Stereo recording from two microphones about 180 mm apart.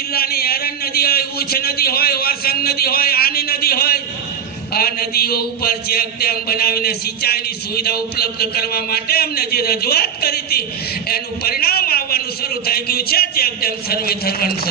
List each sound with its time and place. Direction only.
0.1 s a man's voice: 60° left (ahead or behind)